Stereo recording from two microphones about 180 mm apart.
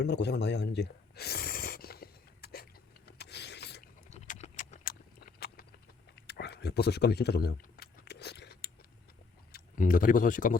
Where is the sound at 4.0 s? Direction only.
40° left (ahead or behind); by 9.1 s 60° left (ahead or behind).